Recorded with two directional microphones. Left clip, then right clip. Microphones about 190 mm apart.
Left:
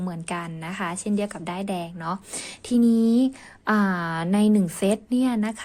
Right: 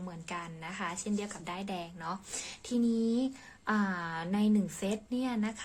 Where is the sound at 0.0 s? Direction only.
45° left (ahead or behind).